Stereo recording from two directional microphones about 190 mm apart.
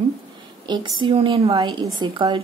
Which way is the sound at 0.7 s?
25° right (ahead or behind).